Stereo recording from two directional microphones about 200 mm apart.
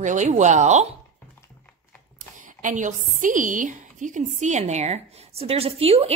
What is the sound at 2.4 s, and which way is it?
A woman's voice, 40° right (ahead or behind).